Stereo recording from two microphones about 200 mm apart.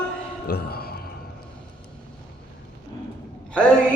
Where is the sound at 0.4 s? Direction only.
50° left (ahead or behind).